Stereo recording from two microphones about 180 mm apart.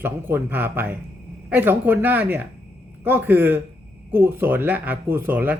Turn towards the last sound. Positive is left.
turn(degrees=-10)  # may be behind; listen again after turning